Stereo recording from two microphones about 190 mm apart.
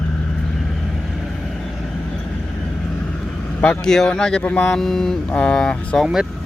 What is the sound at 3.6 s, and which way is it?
Speech, 5° left (ahead or behind).